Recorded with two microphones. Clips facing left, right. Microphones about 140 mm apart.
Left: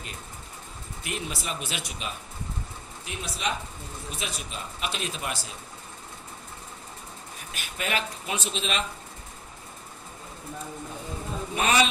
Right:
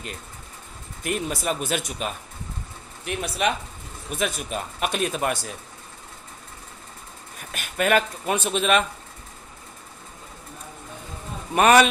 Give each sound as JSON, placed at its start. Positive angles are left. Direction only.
{"t": 1.0, "sound": "speech", "side_deg": -45}
{"t": 3.0, "sound": "speech", "side_deg": -60}
{"t": 7.5, "sound": "speech", "side_deg": -55}
{"t": 11.5, "sound": "speech", "side_deg": -60}